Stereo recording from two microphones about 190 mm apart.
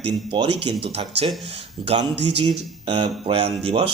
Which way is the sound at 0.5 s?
60° right (ahead or behind).